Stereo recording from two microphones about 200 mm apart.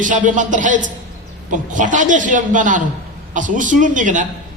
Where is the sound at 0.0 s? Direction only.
40° right (ahead or behind).